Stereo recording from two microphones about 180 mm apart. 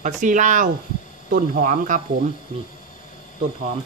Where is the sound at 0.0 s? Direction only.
45° right (ahead or behind).